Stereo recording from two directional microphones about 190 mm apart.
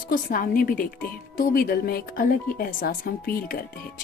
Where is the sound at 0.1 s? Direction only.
45° left (ahead or behind).